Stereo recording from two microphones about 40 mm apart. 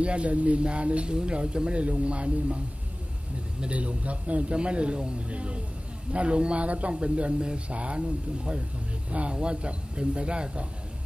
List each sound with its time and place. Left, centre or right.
0.0 s speech: right
3.6 s speech: right
9.1 s speech: right